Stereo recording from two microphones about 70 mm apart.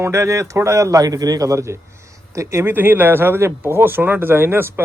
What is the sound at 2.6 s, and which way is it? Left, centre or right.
Speech, right.